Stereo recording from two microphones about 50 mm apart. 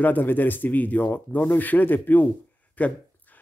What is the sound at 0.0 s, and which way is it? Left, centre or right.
Speech, left.